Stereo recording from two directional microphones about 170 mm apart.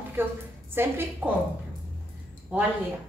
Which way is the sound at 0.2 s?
10° right (ahead or behind).